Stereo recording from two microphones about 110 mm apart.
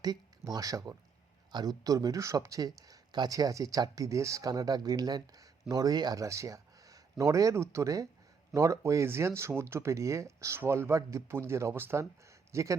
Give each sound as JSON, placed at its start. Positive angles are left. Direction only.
{"t": 0.0, "sound": "speech", "side_deg": -35}